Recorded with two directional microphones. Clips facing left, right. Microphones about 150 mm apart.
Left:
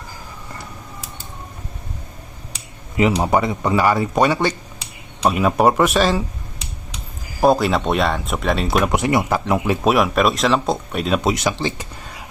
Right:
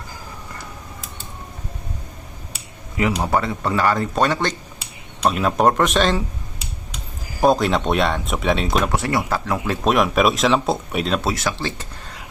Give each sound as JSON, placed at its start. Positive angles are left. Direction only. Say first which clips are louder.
{"t": 3.0, "sound": "speech", "louder": "left 3 dB", "side_deg": 20}
{"t": 7.4, "sound": "speech", "louder": "left 1 dB", "side_deg": 0}
{"t": 8.9, "sound": "speech", "louder": "left 3 dB", "side_deg": 15}
{"t": 9.8, "sound": "speech", "louder": "right 1 dB", "side_deg": 0}
{"t": 11.2, "sound": "speech", "louder": "left 3 dB", "side_deg": 20}